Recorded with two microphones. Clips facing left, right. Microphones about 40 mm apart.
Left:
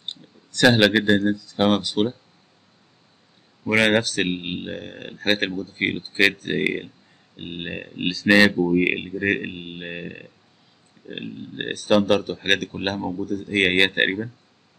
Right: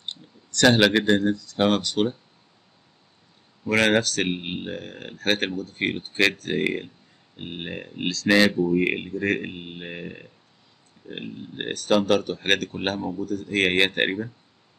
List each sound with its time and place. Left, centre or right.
0.1 s a sound: centre
1.3 s speech: centre
3.6 s speech: centre